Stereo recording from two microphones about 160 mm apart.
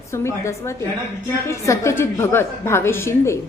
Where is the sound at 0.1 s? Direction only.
15° left (ahead or behind).